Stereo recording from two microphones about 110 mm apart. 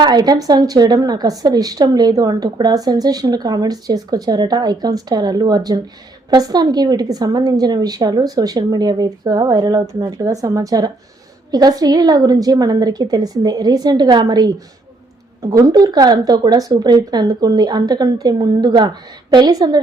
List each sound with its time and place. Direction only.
0.0 s a woman's voice: 35° right (ahead or behind)
15.5 s a woman's voice: 35° right (ahead or behind)